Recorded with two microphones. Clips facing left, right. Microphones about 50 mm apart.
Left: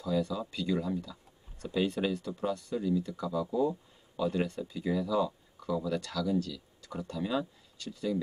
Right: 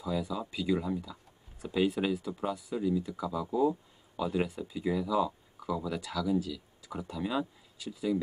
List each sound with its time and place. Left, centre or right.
0.0 s speech: centre